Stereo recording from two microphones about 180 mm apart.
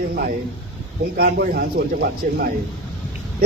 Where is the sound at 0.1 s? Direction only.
55° right (ahead or behind).